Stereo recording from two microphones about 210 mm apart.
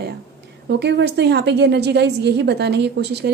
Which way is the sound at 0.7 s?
55° right (ahead or behind).